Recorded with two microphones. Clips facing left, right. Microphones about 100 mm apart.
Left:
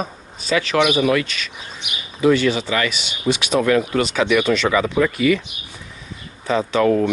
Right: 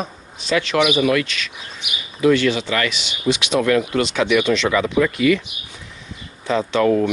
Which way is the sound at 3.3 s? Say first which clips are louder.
Even; 20° left (ahead or behind).